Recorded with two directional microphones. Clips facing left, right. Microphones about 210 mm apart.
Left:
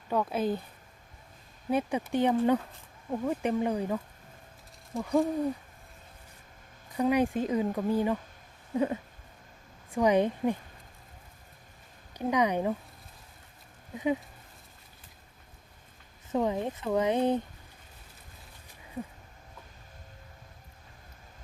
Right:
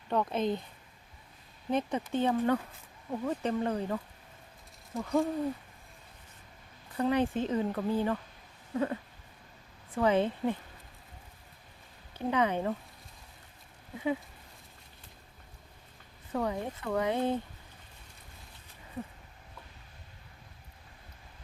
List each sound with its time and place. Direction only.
0.1 s speech: 5° left (ahead or behind)
1.7 s speech: 10° left (ahead or behind)
4.9 s hoot: centre (ahead or behind)
6.9 s speech: 10° left (ahead or behind)
8.7 s a sound: 20° left (ahead or behind)
9.9 s speech: 15° left (ahead or behind)
12.1 s speech: 15° left (ahead or behind)
16.3 s speech: 20° left (ahead or behind)